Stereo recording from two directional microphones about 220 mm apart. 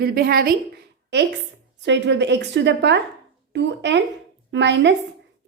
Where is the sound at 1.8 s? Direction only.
55° right (ahead or behind).